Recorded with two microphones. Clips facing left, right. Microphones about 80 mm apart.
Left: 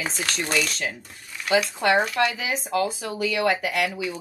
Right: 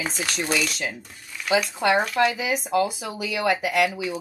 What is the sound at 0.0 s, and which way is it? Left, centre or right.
Speech, centre.